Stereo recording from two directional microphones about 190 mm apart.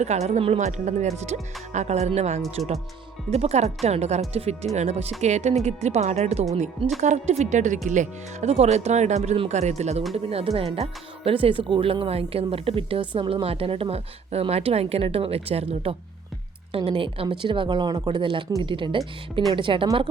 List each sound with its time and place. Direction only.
0.0 s speech: 35° right (ahead or behind)